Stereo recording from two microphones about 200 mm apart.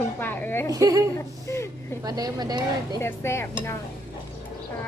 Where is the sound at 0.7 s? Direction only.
20° right (ahead or behind).